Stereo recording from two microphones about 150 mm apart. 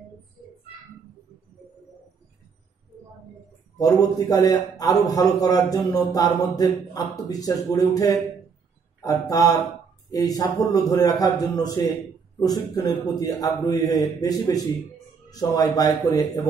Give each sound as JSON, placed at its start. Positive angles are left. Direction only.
{"t": 3.7, "sound": "a man's voice", "side_deg": 20}